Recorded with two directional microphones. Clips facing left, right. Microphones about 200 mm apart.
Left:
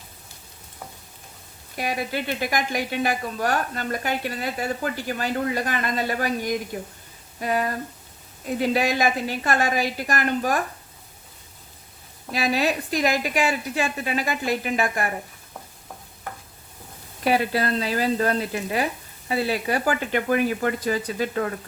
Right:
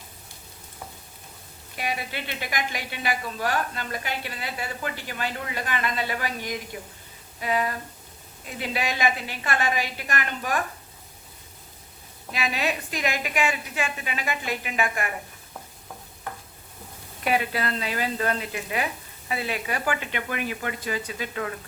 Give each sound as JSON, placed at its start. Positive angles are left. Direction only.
{"t": 1.7, "sound": "a woman's voice", "side_deg": 45}
{"t": 12.3, "sound": "a woman's voice", "side_deg": 40}
{"t": 17.2, "sound": "a woman's voice", "side_deg": 35}